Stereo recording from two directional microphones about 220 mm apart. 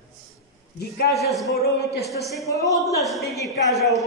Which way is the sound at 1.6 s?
45° left (ahead or behind).